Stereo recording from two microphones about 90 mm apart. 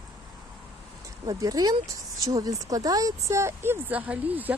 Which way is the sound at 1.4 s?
45° right (ahead or behind).